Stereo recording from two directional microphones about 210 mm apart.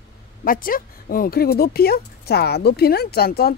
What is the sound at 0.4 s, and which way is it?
Speech, 40° left (ahead or behind).